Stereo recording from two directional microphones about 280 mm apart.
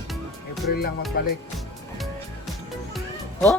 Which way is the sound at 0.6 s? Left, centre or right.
Left.